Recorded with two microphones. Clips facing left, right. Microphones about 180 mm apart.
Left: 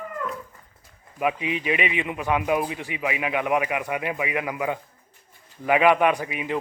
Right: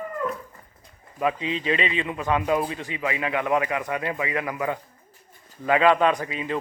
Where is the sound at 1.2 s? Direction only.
15° left (ahead or behind).